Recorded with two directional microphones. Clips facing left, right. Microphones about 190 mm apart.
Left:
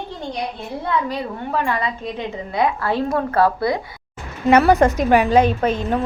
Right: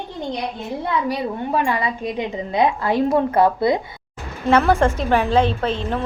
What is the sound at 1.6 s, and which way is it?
A woman's voice, 15° right (ahead or behind).